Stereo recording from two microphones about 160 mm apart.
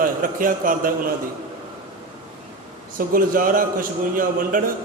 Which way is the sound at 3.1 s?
60° right (ahead or behind).